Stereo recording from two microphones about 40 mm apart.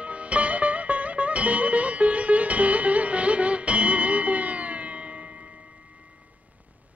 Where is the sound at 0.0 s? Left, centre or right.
Right.